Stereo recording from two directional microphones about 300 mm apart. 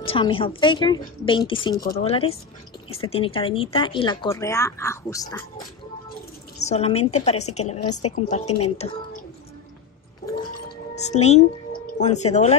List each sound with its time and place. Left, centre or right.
0.0 s a woman's voice: centre
11.0 s speech: left